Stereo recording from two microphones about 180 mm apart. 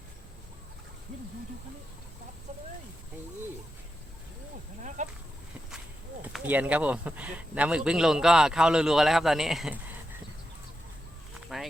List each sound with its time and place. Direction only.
5.0 s speech: 45° right (ahead or behind)
6.2 s speech: 10° right (ahead or behind)
11.5 s a sound: centre (ahead or behind)